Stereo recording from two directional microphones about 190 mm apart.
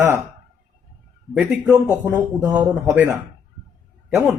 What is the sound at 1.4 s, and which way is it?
A man's voice, 10° right (ahead or behind).